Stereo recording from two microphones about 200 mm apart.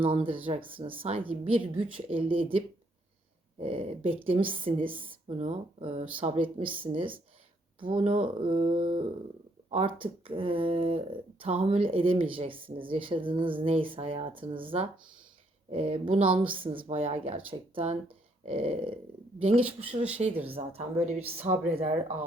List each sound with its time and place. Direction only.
0.0 s speech: 25° right (ahead or behind)